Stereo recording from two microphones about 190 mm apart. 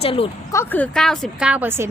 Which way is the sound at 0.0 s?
30° left (ahead or behind).